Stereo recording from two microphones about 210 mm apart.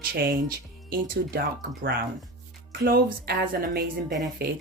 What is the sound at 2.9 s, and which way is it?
Speech, 45° right (ahead or behind).